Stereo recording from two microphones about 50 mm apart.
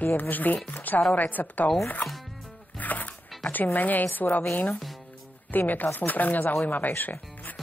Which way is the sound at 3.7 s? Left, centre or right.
Left.